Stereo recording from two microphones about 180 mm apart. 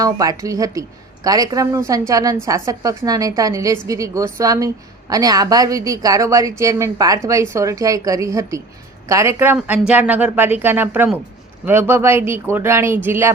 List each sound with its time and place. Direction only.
0.0 s speech: 20° right (ahead or behind)